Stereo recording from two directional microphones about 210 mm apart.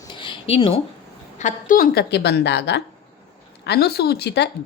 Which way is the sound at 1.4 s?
40° left (ahead or behind).